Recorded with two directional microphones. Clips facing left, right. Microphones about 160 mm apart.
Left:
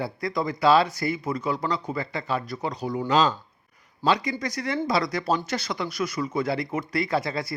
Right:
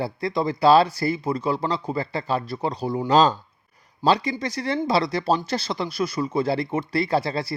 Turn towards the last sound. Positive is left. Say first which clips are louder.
# right 3 dB
turn(degrees=-30)  # may be behind; listen again after turning